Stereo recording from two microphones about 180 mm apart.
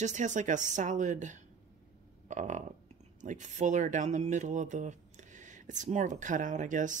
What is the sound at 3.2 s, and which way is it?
Speech, 45° right (ahead or behind).